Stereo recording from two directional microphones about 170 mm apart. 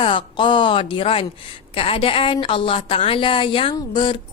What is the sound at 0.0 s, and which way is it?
A woman's voice, 30° left (ahead or behind).